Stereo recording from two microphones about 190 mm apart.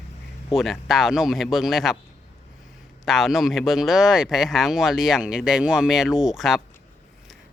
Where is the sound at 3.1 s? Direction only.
Centre (ahead or behind).